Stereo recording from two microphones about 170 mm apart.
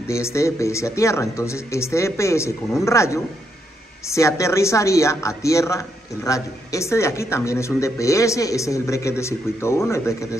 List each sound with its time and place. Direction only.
0.1 s speech: 15° left (ahead or behind)